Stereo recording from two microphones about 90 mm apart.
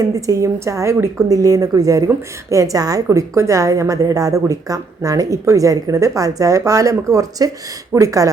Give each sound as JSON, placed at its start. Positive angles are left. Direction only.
{"t": 0.0, "sound": "a woman's voice", "side_deg": -40}